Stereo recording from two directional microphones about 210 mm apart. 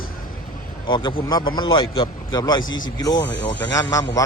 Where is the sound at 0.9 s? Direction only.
20° left (ahead or behind).